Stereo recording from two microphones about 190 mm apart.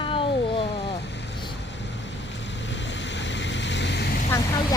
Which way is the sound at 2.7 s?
70° left (ahead or behind).